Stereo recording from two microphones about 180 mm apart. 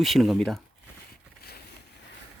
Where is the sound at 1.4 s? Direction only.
60° left (ahead or behind).